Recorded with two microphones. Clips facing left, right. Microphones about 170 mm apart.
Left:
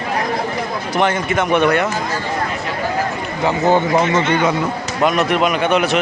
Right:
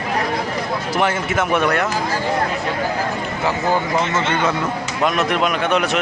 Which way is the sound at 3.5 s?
25° left (ahead or behind).